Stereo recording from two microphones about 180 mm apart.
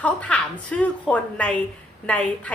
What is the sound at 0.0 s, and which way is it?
A woman's voice, 5° left (ahead or behind).